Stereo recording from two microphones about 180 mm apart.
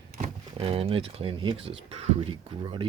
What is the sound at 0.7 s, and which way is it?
Speech, 30° right (ahead or behind).